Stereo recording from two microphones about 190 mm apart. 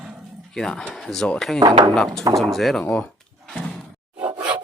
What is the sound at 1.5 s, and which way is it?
Speech, 25° right (ahead or behind).